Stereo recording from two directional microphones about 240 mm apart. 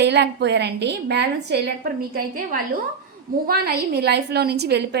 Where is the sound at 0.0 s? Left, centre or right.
Right.